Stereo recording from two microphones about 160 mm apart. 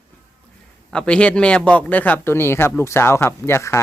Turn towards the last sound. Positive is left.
turn(degrees=15)  # may be behind; listen again after turning